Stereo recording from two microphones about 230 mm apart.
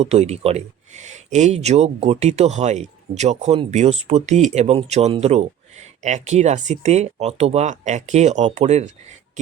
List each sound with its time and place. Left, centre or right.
0.0 s speech: right